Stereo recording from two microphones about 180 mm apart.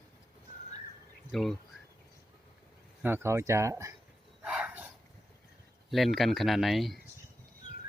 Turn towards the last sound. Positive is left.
turn(degrees=0)  # may be behind; listen again after turning